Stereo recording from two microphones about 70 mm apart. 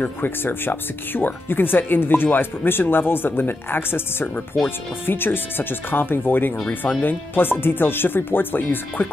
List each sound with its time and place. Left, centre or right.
0.0 s speech: left